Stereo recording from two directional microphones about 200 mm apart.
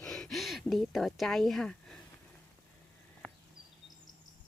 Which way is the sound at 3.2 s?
5° left (ahead or behind).